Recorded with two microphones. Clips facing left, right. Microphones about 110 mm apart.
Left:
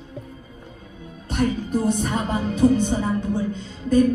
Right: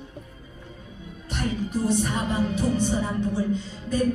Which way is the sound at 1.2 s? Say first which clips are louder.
Left 5 dB; 50° left (ahead or behind).